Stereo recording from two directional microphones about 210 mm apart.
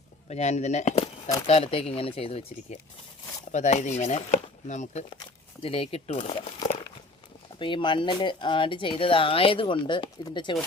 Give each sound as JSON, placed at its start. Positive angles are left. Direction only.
{"t": 0.3, "sound": "chopping", "side_deg": 30}
{"t": 1.5, "sound": "speech", "side_deg": 30}
{"t": 3.5, "sound": "chopping", "side_deg": 35}
{"t": 5.6, "sound": "speech", "side_deg": 25}